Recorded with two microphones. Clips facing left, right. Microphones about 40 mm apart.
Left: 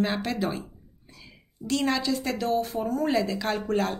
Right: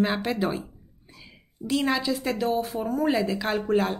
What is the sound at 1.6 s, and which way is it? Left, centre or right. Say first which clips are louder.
A woman's voice: right 1 dB; centre.